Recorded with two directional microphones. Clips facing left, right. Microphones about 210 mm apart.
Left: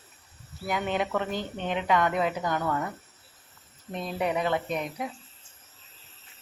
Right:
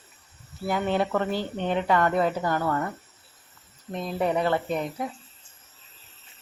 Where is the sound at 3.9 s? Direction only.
20° right (ahead or behind).